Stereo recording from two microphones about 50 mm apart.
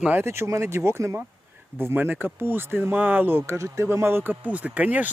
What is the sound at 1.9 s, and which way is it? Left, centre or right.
Speech, right.